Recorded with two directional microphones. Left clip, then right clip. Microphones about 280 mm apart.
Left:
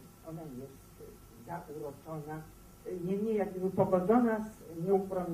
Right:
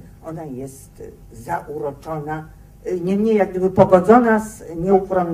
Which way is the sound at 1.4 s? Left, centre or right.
Right.